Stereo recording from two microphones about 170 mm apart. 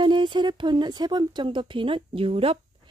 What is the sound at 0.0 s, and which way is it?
Speech, 25° right (ahead or behind).